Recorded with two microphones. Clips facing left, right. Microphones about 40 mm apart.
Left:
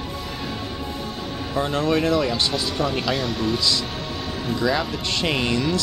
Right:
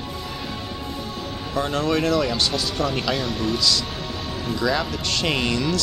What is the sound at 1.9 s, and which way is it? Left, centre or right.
Speech, centre.